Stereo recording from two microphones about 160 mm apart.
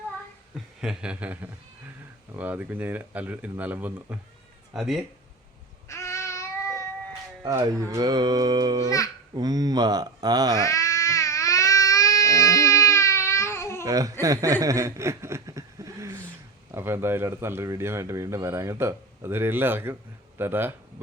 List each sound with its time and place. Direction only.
0.8 s speech: 5° right (ahead or behind)
5.9 s child singing: 20° left (ahead or behind)
7.4 s a sound: 20° right (ahead or behind)
10.6 s baby cry: 20° left (ahead or behind)
13.8 s a sound: 20° right (ahead or behind)
16.7 s speech: 15° right (ahead or behind)